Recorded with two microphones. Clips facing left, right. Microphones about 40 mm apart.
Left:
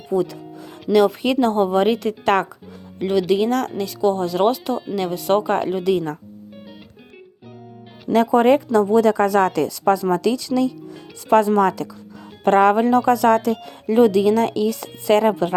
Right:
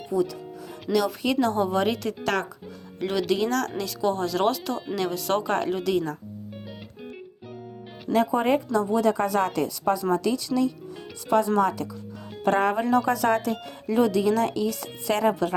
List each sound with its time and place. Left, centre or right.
0.1 s a woman's voice: left
3.0 s speech: centre
3.3 s a woman's voice: left
3.8 s a woman's voice: centre
8.1 s speech: left
11.3 s speech: left